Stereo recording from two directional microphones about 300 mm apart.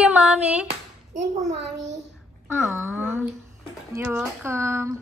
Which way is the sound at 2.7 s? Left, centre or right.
Centre.